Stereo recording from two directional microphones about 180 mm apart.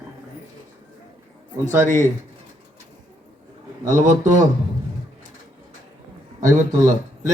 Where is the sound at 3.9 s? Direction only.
45° right (ahead or behind).